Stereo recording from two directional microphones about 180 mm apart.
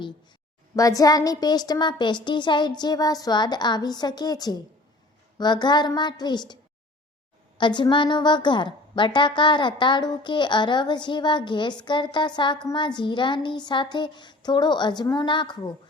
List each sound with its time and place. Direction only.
0.8 s a woman's voice: 20° left (ahead or behind)
7.6 s a woman's voice: 25° left (ahead or behind)